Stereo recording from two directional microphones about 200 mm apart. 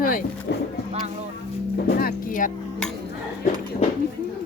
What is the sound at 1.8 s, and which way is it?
Speech, 45° left (ahead or behind).